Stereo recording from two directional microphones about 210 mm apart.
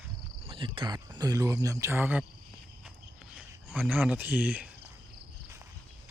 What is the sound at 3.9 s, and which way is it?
Speech, 10° right (ahead or behind).